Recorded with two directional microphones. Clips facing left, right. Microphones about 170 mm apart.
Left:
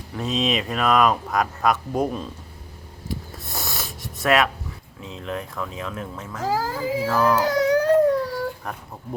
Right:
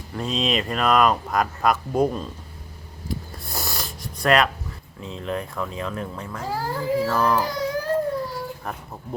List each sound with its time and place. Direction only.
0.2 s speech: centre (ahead or behind)
3.1 s a sound: centre (ahead or behind)
5.0 s speech: centre (ahead or behind)
6.4 s speech: 90° left
7.1 s speech: 5° left (ahead or behind)
7.7 s baby cry: 75° left (ahead or behind)
8.7 s speech: centre (ahead or behind)